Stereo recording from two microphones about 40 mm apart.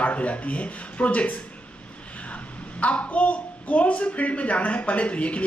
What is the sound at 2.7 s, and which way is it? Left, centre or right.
A child's voice, left.